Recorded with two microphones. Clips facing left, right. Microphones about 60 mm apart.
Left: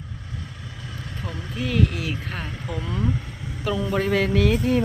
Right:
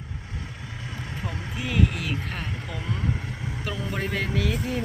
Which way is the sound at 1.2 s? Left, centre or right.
Centre.